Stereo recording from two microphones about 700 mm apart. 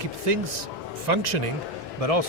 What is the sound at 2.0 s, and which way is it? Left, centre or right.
Speech, right.